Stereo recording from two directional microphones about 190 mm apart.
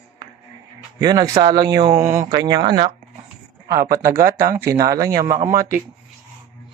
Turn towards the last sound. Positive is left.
turn(degrees=-15)  # may be behind; listen again after turning